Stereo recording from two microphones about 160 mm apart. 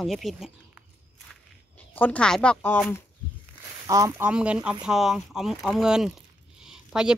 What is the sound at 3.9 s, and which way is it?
Speech, 20° right (ahead or behind).